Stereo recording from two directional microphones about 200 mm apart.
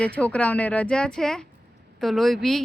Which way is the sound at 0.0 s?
5° left (ahead or behind).